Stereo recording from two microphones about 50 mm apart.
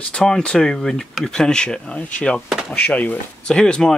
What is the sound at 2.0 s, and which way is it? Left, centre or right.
Speech, left.